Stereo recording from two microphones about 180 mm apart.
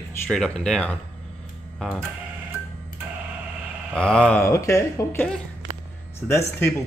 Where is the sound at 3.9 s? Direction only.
5° left (ahead or behind).